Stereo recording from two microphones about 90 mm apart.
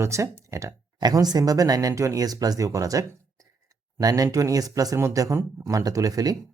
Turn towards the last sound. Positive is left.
turn(degrees=-40)  # may be behind; listen again after turning